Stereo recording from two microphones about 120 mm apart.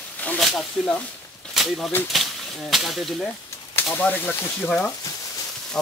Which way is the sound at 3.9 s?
15° left (ahead or behind).